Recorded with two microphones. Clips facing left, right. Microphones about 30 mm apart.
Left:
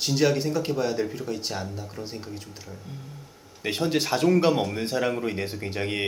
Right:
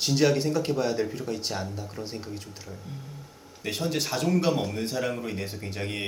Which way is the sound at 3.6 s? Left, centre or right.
Centre.